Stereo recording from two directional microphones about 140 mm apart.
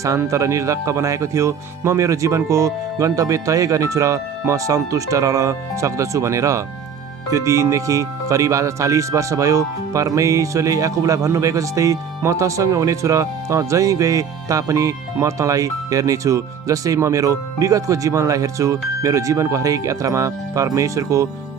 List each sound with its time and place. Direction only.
0.0 s speech: 20° right (ahead or behind)